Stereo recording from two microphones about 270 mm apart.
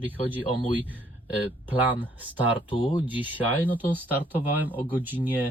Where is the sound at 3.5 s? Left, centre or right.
Centre.